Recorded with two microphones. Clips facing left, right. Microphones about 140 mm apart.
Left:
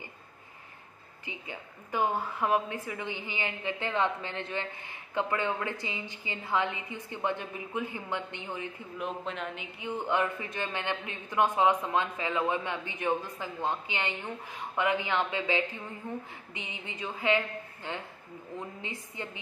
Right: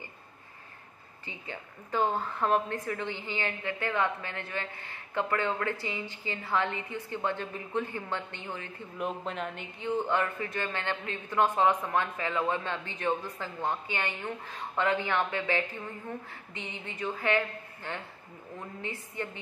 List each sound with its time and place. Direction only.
1.2 s a woman's voice: 15° left (ahead or behind)
8.9 s speech: centre (ahead or behind)
9.8 s a woman's voice: 15° left (ahead or behind)